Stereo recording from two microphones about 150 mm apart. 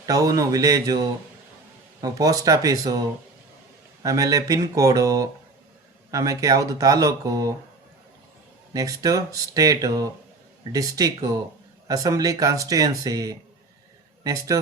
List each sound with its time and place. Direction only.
0.0 s speech: 25° right (ahead or behind)
4.0 s speech: 20° right (ahead or behind)
8.7 s speech: 25° right (ahead or behind)